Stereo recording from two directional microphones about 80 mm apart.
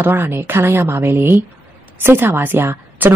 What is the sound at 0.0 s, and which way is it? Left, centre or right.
A woman's voice, right.